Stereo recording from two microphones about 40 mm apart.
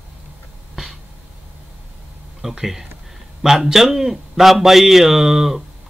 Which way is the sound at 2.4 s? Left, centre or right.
Centre.